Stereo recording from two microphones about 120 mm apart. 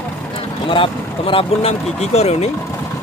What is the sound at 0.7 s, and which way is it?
Speech, 45° left (ahead or behind).